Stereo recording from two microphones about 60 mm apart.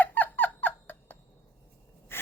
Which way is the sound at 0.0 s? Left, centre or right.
Left.